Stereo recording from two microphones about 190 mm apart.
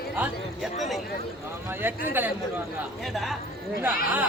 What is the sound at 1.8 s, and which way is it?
Speech, 10° right (ahead or behind).